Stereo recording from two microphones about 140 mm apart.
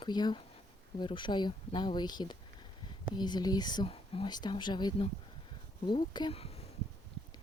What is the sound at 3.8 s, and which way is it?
Speech, 40° left (ahead or behind).